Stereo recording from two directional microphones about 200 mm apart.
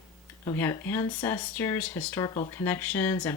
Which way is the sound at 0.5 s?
10° left (ahead or behind).